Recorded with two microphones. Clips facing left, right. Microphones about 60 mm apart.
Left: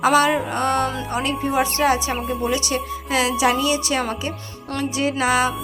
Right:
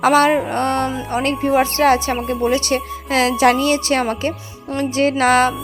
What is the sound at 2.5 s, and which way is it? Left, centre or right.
A woman's voice, right.